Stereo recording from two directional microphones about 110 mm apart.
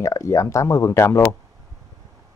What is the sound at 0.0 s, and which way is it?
Speech, 30° left (ahead or behind).